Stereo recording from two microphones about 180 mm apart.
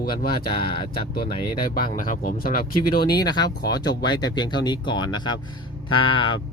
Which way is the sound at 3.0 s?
25° left (ahead or behind).